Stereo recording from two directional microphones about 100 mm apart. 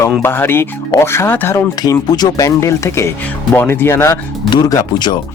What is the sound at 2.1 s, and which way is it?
Speech, 40° left (ahead or behind).